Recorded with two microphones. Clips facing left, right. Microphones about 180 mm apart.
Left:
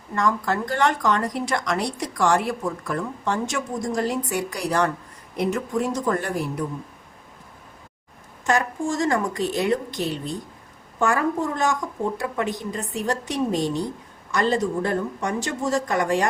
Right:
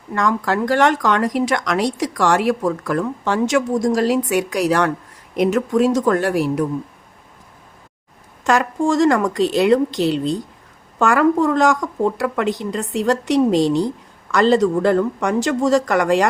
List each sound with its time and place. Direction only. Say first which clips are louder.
0.1 s speech: right 4 dB; 90° right
8.4 s speech: right 6 dB; 85° right